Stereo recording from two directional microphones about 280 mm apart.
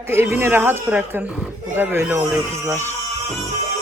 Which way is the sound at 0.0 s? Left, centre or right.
Centre.